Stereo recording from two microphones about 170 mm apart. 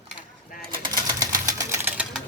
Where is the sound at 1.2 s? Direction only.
20° right (ahead or behind).